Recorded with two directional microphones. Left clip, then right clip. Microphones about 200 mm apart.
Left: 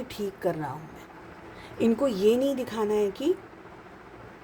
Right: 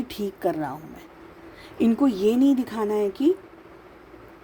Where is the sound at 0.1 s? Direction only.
40° right (ahead or behind).